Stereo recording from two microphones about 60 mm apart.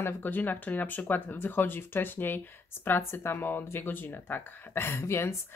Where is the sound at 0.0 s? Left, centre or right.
Left.